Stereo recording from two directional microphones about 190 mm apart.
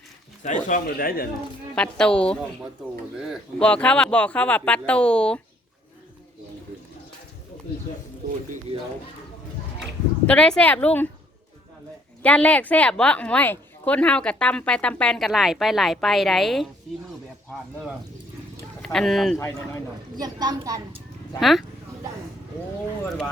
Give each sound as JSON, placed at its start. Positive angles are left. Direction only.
{"t": 0.4, "sound": "speech", "side_deg": 40}
{"t": 0.9, "sound": "speech", "side_deg": 50}
{"t": 1.7, "sound": "a woman's voice", "side_deg": 5}
{"t": 10.2, "sound": "speech", "side_deg": 5}
{"t": 12.2, "sound": "a woman's voice", "side_deg": 5}
{"t": 18.8, "sound": "speech", "side_deg": 0}
{"t": 19.4, "sound": "speech", "side_deg": 15}
{"t": 20.1, "sound": "a woman's voice", "side_deg": -20}
{"t": 21.3, "sound": "a woman's voice", "side_deg": 0}